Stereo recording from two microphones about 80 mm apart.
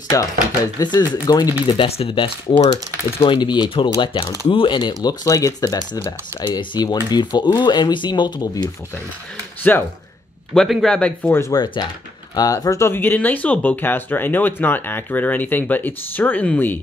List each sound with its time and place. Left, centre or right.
0.1 s speech: left
1.8 s speech: left
3.3 s speech: left
4.0 s speech: left
5.2 s speech: left
6.4 s speech: left
9.6 s speech: left
10.5 s a man's voice: centre
11.2 s speech: left
11.5 s speech: left
12.4 s speech: left